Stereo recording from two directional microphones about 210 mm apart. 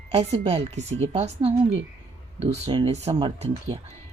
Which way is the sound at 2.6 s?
30° right (ahead or behind).